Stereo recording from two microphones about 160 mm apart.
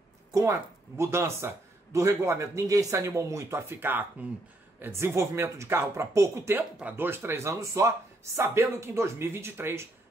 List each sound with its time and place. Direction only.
0.3 s speech: 20° right (ahead or behind)